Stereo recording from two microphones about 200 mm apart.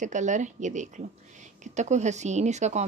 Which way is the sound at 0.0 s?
35° right (ahead or behind).